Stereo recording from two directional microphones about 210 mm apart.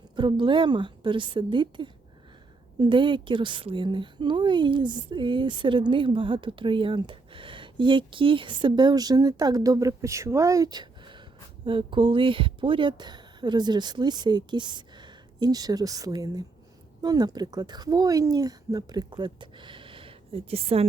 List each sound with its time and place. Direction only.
0.2 s a woman's voice: 25° right (ahead or behind)